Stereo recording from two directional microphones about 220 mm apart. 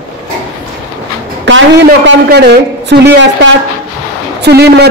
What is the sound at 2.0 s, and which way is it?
Speech, 50° right (ahead or behind).